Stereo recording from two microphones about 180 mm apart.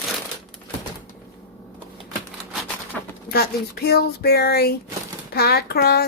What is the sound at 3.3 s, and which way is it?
A woman's voice, 60° left (ahead or behind).